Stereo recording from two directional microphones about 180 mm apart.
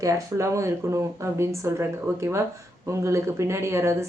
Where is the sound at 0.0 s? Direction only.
15° right (ahead or behind).